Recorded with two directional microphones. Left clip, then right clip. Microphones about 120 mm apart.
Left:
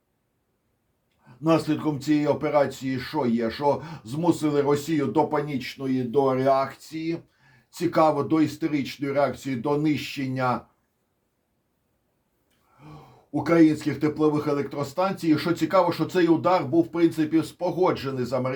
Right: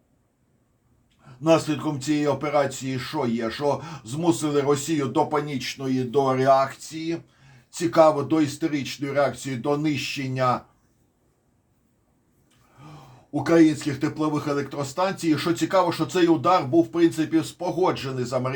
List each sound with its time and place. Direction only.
1.5 s speech: 30° left (ahead or behind)
6.3 s speech: 10° right (ahead or behind)
6.7 s speech: 25° left (ahead or behind)
13.3 s speech: 35° left (ahead or behind)